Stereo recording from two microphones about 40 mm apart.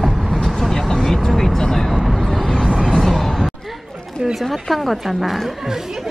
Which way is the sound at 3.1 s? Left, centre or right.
Centre.